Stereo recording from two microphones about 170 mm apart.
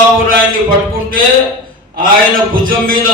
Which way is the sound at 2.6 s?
55° right (ahead or behind).